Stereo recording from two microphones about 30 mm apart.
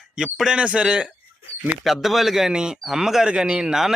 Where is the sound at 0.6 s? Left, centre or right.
Right.